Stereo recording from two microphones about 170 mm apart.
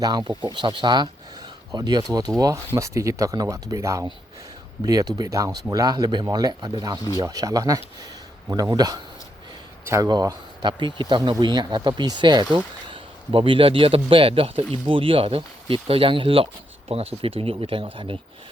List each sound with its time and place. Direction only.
0.0 s a man's voice: 25° right (ahead or behind)